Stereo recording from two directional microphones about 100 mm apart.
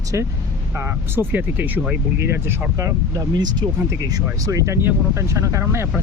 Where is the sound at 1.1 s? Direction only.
20° right (ahead or behind).